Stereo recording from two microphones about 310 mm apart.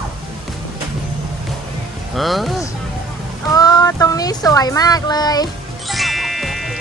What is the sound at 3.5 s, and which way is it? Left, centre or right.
Speech, centre.